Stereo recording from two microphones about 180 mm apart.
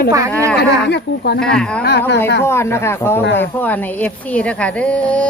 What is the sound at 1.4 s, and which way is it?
Speech, 5° left (ahead or behind).